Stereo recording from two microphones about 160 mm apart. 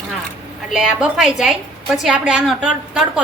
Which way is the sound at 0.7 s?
5° right (ahead or behind).